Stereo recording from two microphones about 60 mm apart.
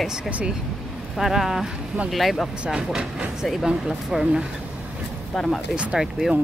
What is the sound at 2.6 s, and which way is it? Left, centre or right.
Speech, centre.